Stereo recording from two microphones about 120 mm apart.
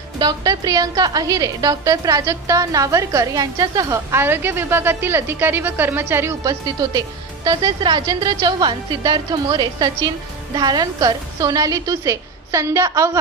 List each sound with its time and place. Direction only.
0.2 s a woman's voice: 35° right (ahead or behind)
6.4 s a woman's voice: 30° right (ahead or behind)